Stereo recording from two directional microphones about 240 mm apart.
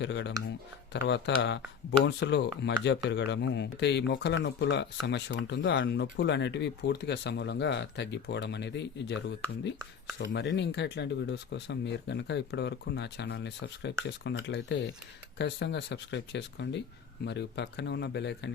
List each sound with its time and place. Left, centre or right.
0.0 s speech: left